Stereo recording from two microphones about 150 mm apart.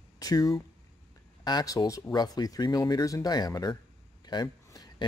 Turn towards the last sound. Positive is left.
turn(degrees=30)  # may be behind; listen again after turning